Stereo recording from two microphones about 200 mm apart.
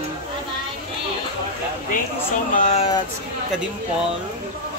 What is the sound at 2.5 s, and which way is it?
Speech, 35° left (ahead or behind).